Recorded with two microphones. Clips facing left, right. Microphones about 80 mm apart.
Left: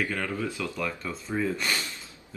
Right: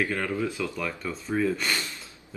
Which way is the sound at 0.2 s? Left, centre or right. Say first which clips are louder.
Right 3 dB; centre.